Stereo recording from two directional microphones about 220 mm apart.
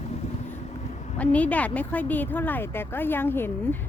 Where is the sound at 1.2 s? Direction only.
5° left (ahead or behind).